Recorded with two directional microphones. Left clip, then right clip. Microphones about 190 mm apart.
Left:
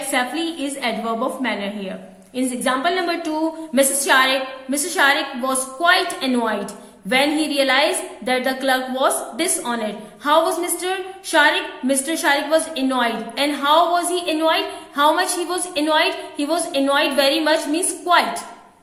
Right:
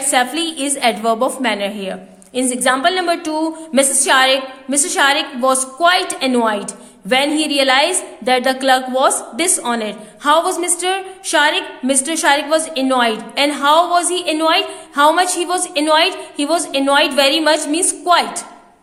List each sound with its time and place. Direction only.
0.1 s a woman's voice: 55° right (ahead or behind)